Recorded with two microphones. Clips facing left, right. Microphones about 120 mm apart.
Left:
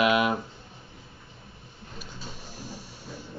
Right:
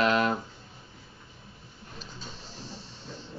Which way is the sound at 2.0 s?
10° left (ahead or behind).